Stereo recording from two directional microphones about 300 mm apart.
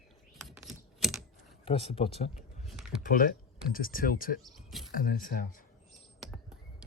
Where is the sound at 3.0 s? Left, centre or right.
Left.